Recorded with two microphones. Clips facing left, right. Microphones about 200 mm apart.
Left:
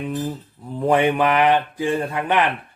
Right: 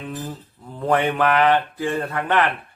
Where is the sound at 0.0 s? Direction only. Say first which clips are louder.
Left 5 dB; 15° left (ahead or behind).